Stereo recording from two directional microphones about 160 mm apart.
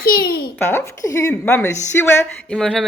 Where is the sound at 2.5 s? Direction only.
5° left (ahead or behind).